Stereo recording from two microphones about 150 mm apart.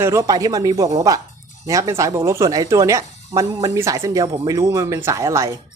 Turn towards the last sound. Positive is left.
turn(degrees=-20)  # may be behind; listen again after turning